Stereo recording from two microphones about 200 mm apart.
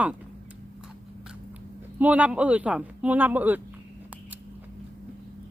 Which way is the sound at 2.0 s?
5° right (ahead or behind).